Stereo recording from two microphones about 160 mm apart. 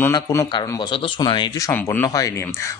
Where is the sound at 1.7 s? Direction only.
15° left (ahead or behind).